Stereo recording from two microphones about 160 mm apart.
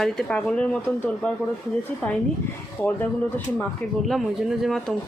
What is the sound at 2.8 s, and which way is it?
Speech, 10° left (ahead or behind).